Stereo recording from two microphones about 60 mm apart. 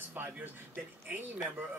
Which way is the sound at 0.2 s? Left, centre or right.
Right.